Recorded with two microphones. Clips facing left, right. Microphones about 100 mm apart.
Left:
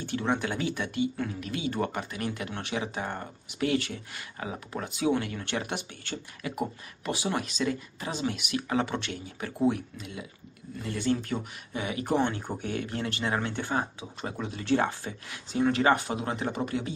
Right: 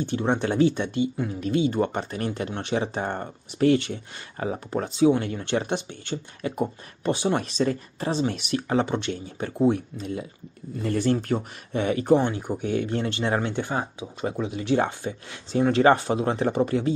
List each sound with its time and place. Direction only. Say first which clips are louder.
0.0 s speech: right 5 dB; 25° right (ahead or behind)
8.8 s speech: right 6 dB; 25° right (ahead or behind)
12.1 s speech: right 5 dB; 15° right (ahead or behind)
12.7 s speech: right 8 dB; 25° right (ahead or behind)